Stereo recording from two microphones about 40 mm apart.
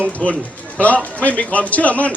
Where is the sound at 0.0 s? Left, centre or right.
Left.